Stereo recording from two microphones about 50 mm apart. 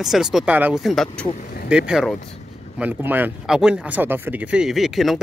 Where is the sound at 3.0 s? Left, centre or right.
Right.